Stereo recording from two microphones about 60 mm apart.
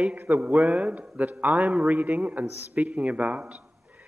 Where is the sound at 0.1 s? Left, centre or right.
Right.